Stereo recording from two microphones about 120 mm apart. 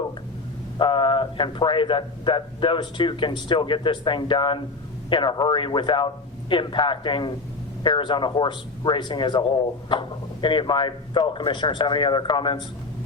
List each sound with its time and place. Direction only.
0.8 s speech: 40° left (ahead or behind)